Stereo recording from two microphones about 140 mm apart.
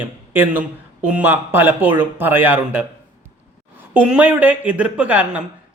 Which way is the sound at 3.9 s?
10° right (ahead or behind).